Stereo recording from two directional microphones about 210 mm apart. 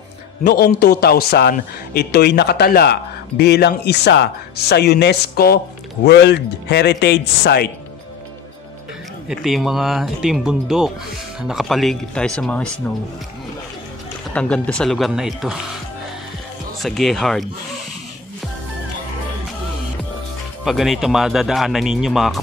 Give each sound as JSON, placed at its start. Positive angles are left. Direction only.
{"t": 0.5, "sound": "a man's voice", "side_deg": 50}
{"t": 9.3, "sound": "speech", "side_deg": 0}
{"t": 14.3, "sound": "speech", "side_deg": 5}
{"t": 16.8, "sound": "speech", "side_deg": 0}
{"t": 20.6, "sound": "speech", "side_deg": 0}